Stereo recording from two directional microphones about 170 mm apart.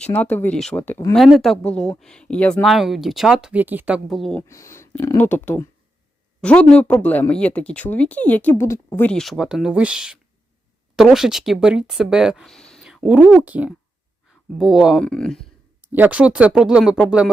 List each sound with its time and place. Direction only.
0.0 s speech: 10° left (ahead or behind)
1.1 s speech: centre (ahead or behind)
4.4 s speech: 15° left (ahead or behind)
15.8 s speech: 10° right (ahead or behind)